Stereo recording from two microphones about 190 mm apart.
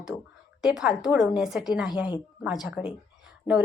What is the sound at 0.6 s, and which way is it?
A woman's voice, 5° right (ahead or behind).